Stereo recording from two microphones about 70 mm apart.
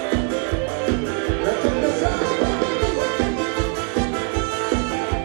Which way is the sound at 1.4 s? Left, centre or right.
Centre.